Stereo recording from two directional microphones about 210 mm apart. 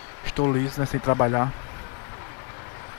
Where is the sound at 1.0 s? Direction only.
20° left (ahead or behind).